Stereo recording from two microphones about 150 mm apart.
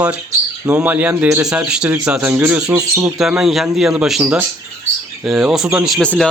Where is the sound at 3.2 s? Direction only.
5° right (ahead or behind).